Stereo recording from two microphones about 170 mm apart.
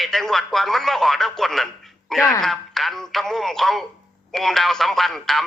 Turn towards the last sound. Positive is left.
turn(degrees=0)  # may be behind; listen again after turning